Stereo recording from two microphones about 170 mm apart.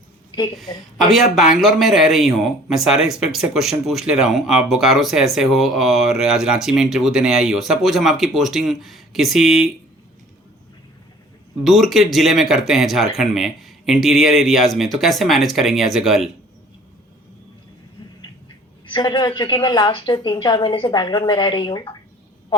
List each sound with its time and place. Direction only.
2.0 s speech: centre (ahead or behind)
11.6 s speech: centre (ahead or behind)
18.9 s a woman's voice: 25° left (ahead or behind)